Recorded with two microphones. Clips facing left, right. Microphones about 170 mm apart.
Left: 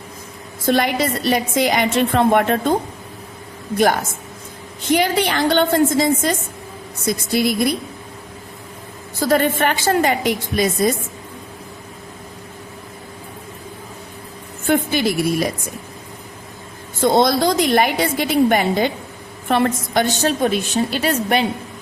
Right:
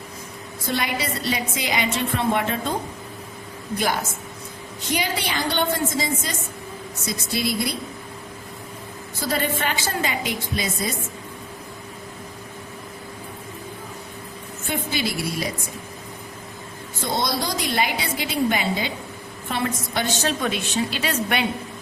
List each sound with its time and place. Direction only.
0.7 s a woman's voice: 65° left (ahead or behind)
1.3 s a woman's voice: 55° left (ahead or behind)
4.9 s a woman's voice: 60° left (ahead or behind)
9.3 s a woman's voice: 55° left (ahead or behind)
14.7 s a woman's voice: 50° left (ahead or behind)
17.0 s a man's voice: 90° left
17.2 s a woman's voice: 60° left (ahead or behind)
19.9 s a woman's voice: 40° left (ahead or behind)